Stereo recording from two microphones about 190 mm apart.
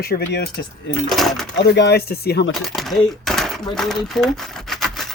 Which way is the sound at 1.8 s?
60° left (ahead or behind).